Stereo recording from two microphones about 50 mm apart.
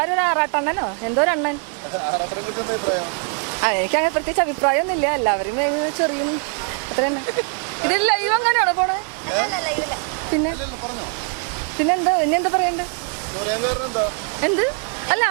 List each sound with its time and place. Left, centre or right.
0.0 s speech: right
11.8 s speech: right